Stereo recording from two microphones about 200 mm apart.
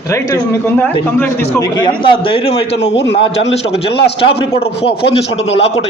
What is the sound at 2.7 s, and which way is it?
Speech, 65° left (ahead or behind).